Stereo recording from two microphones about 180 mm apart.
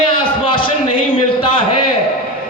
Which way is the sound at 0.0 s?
30° left (ahead or behind).